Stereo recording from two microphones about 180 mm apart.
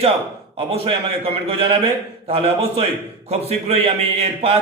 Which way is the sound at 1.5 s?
30° right (ahead or behind).